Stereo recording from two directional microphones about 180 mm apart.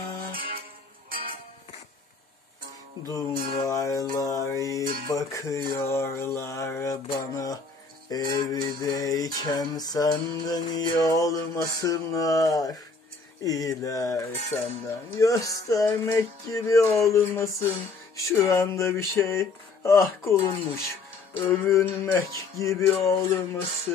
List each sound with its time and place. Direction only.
0.3 s music: 55° right (ahead or behind)
3.6 s mantra: 15° left (ahead or behind)
5.0 s music: 20° left (ahead or behind)
5.9 s mantra: 15° left (ahead or behind)
8.1 s music: 20° left (ahead or behind)